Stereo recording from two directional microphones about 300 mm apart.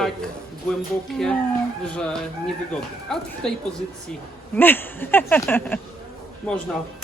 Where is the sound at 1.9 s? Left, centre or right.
Centre.